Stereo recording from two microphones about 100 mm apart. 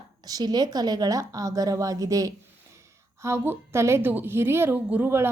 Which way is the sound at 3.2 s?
25° right (ahead or behind).